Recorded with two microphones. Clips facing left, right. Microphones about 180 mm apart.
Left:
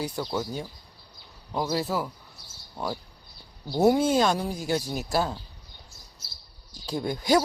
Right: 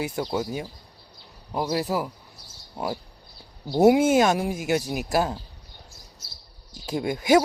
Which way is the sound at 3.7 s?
15° right (ahead or behind).